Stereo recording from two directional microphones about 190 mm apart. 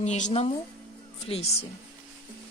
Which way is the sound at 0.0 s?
40° left (ahead or behind).